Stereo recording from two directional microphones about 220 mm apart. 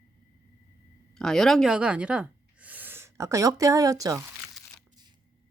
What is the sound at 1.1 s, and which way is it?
Speech, centre (ahead or behind).